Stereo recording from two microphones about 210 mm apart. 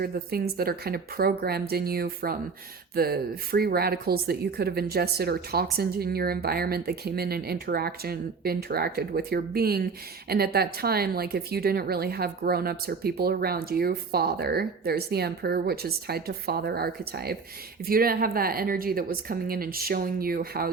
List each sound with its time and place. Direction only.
0.0 s speech: 45° right (ahead or behind)